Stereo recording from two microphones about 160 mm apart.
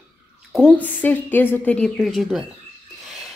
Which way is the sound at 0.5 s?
5° left (ahead or behind).